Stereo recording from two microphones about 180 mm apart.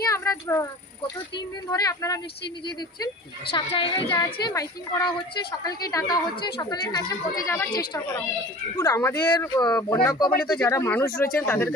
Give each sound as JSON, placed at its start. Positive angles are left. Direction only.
{"t": 0.0, "sound": "a sound", "side_deg": 15}
{"t": 1.7, "sound": "a woman's voice", "side_deg": 20}
{"t": 3.5, "sound": "a woman's voice", "side_deg": 30}